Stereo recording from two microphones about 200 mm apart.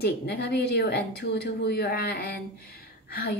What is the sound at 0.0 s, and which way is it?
A woman's voice, 55° left (ahead or behind).